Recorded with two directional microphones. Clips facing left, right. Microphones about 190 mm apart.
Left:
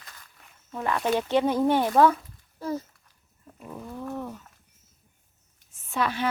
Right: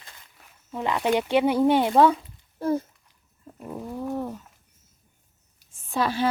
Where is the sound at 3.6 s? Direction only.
25° right (ahead or behind).